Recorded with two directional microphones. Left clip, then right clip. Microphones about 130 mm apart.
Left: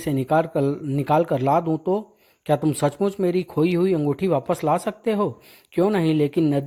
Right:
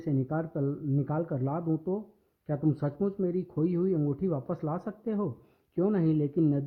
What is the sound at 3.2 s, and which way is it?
Speech, 45° left (ahead or behind).